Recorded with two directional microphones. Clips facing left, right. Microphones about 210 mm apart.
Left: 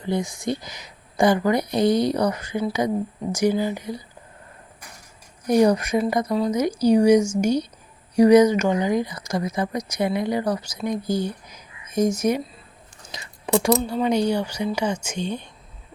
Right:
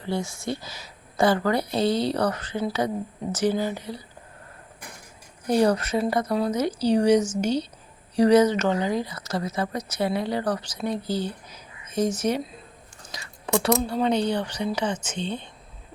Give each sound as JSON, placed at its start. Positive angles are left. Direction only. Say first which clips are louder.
{"t": 0.0, "sound": "speech", "louder": "left 4 dB", "side_deg": 15}
{"t": 5.5, "sound": "speech", "louder": "left 3 dB", "side_deg": 15}
{"t": 13.1, "sound": "a sound", "louder": "left 4 dB", "side_deg": 20}
{"t": 13.8, "sound": "speech", "louder": "left 2 dB", "side_deg": 10}